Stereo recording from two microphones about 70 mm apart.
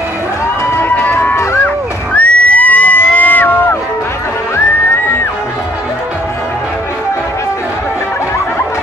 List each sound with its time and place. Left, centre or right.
0.7 s run: left
1.3 s run: left
2.1 s crowd: left